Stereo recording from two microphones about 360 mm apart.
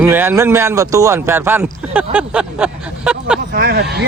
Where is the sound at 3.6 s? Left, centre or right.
Right.